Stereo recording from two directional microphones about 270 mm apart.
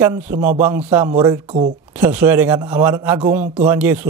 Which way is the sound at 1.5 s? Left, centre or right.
Right.